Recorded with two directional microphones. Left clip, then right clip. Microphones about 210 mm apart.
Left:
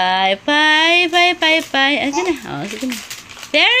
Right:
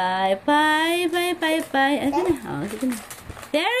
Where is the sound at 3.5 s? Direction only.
35° right (ahead or behind).